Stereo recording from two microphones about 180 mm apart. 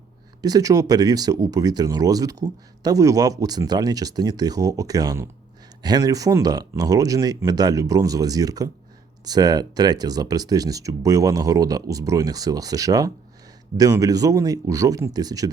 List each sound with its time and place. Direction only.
0.4 s speech: 20° right (ahead or behind)